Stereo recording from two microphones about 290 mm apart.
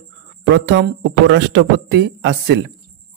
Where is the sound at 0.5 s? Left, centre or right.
Right.